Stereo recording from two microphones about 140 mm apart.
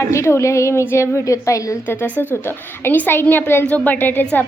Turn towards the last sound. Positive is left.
turn(degrees=15)  # may be behind; listen again after turning